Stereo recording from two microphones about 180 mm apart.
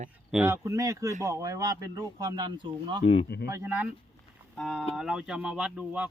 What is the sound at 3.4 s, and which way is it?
Speech, 15° right (ahead or behind).